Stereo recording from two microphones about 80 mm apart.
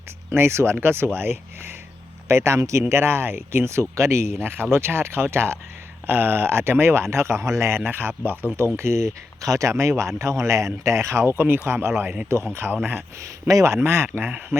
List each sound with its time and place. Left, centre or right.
0.3 s speech: right
13.5 s speech: right
13.7 s speech: right